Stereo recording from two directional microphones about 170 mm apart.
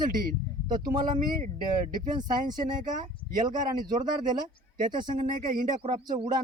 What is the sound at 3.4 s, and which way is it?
Speech, 25° right (ahead or behind).